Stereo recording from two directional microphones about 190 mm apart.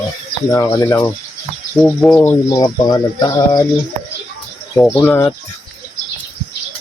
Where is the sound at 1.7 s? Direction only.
5° left (ahead or behind).